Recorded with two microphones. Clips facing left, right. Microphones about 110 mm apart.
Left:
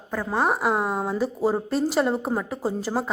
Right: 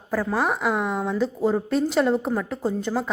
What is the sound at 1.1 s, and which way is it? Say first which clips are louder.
A woman's voice: right 2 dB; 10° left (ahead or behind).